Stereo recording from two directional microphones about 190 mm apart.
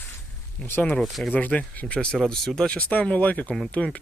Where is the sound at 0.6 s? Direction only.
10° left (ahead or behind).